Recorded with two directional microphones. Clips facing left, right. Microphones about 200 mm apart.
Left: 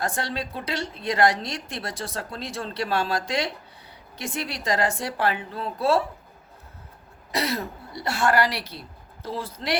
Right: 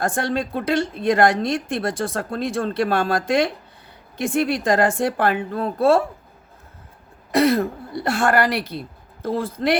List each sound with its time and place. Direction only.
0.0 s a woman's voice: 50° right (ahead or behind)
7.3 s a woman's voice: 55° right (ahead or behind)